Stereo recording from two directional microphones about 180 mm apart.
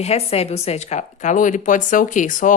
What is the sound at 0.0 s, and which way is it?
A woman's voice, 35° left (ahead or behind).